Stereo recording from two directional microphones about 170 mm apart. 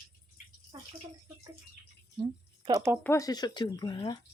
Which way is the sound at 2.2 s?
25° right (ahead or behind).